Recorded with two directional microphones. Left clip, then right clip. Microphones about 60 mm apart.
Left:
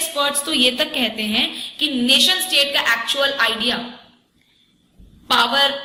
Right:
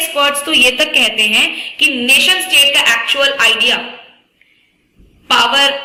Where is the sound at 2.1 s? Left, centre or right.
Centre.